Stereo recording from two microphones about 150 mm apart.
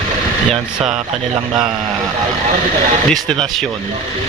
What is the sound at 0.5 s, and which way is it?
Speech, 5° right (ahead or behind).